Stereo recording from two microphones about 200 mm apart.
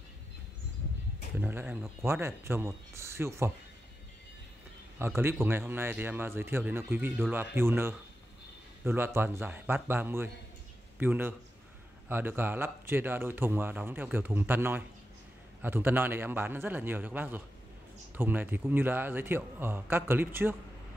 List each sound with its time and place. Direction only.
1.4 s speech: 10° right (ahead or behind)
4.9 s speech: 10° right (ahead or behind)